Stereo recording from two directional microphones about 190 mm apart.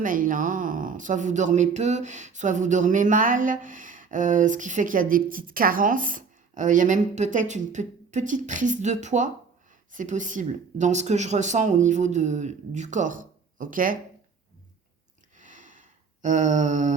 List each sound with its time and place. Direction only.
0.0 s speech: 45° right (ahead or behind)
15.4 s gasp: 40° right (ahead or behind)